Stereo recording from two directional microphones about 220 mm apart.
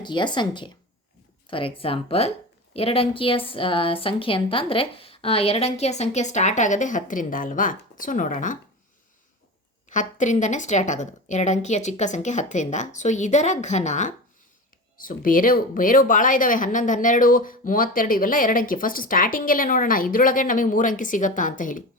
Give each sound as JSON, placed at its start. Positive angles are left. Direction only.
{"t": 0.0, "sound": "a woman's voice", "side_deg": 20}
{"t": 9.9, "sound": "speech", "side_deg": 35}